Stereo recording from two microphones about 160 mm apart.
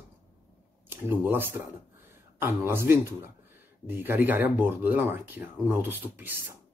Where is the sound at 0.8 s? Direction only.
15° right (ahead or behind).